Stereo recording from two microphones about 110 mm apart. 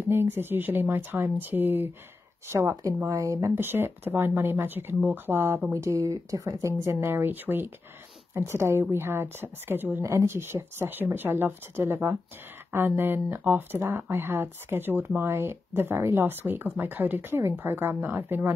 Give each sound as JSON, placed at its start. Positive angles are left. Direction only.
{"t": 0.1, "sound": "speech", "side_deg": -20}